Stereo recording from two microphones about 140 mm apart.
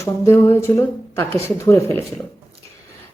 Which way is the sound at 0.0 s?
20° left (ahead or behind).